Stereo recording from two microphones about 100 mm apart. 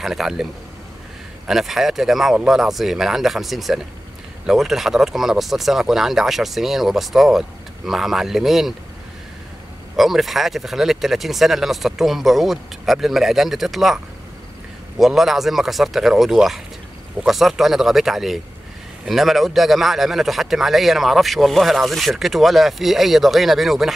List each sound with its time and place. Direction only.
0.0 s speech: 5° right (ahead or behind)
1.5 s speech: centre (ahead or behind)
9.9 s speech: centre (ahead or behind)